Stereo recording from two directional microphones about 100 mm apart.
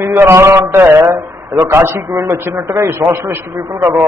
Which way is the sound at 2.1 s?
35° right (ahead or behind).